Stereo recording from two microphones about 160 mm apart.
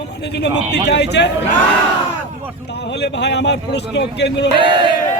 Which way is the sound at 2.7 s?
90° left.